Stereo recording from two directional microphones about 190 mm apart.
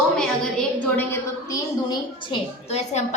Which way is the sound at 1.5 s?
20° left (ahead or behind).